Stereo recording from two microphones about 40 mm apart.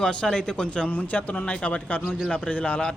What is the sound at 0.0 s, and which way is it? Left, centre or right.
Speech, left.